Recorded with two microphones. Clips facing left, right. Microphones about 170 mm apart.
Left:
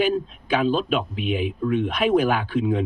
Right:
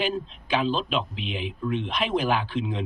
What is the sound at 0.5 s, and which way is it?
Speech, 50° left (ahead or behind).